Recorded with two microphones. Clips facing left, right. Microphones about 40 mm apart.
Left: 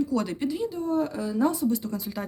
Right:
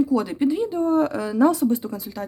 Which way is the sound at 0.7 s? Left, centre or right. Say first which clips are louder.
Right 7 dB; right.